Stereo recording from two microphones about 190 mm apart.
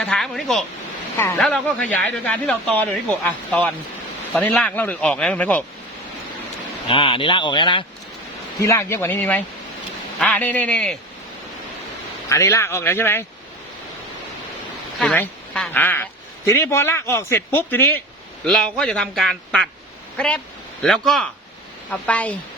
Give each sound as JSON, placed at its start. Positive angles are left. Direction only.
{"t": 0.0, "sound": "speech", "side_deg": 5}
{"t": 4.4, "sound": "speech", "side_deg": 5}
{"t": 6.8, "sound": "speech", "side_deg": 25}
{"t": 8.6, "sound": "speech", "side_deg": 15}
{"t": 12.3, "sound": "speech", "side_deg": 15}
{"t": 14.9, "sound": "speech", "side_deg": 5}